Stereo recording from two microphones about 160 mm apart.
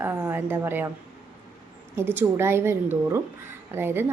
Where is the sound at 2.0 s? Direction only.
15° right (ahead or behind).